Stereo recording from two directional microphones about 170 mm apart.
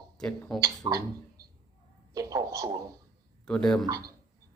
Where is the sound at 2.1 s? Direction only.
20° right (ahead or behind).